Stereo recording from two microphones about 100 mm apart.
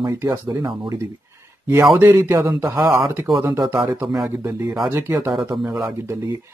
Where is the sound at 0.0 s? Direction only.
30° right (ahead or behind).